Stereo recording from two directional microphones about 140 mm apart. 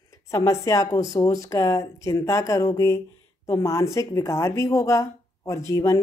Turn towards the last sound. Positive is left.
turn(degrees=20)  # may be behind; listen again after turning